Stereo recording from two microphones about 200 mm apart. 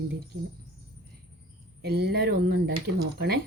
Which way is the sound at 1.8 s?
50° right (ahead or behind).